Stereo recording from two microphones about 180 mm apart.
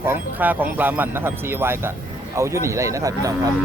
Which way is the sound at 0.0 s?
10° right (ahead or behind).